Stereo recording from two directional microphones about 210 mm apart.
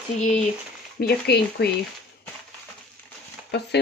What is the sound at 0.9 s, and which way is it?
Speech, 50° left (ahead or behind).